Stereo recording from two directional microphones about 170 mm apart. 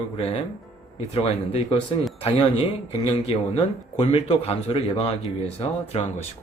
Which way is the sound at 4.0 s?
35° left (ahead or behind).